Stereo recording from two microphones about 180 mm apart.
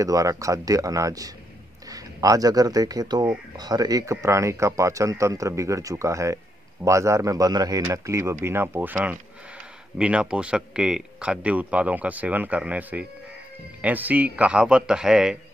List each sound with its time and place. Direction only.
0.0 s speech: 20° right (ahead or behind)